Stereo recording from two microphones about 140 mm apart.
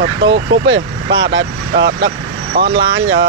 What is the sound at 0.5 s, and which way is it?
Speech, 35° right (ahead or behind).